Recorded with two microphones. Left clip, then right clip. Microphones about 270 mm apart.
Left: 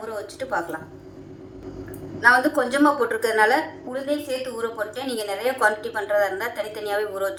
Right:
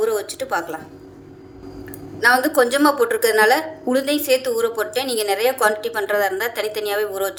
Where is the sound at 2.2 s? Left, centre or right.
Right.